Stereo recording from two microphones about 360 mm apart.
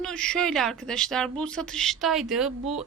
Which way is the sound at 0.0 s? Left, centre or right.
Centre.